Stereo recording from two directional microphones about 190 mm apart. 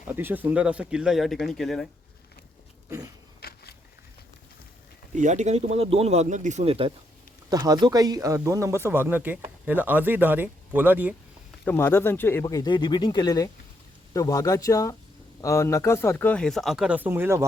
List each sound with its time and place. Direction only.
0.1 s speech: 10° right (ahead or behind)
3.4 s a sound: 55° left (ahead or behind)
5.1 s a man's voice: 40° right (ahead or behind); by 11.1 s 10° right (ahead or behind)
11.6 s speech: 10° left (ahead or behind); by 17.4 s 10° right (ahead or behind)